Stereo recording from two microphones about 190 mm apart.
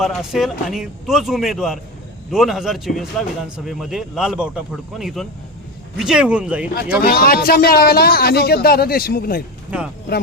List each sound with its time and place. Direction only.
0.0 s speech: centre (ahead or behind)
7.0 s a man's voice: 50° left (ahead or behind)
9.7 s speech: 5° right (ahead or behind)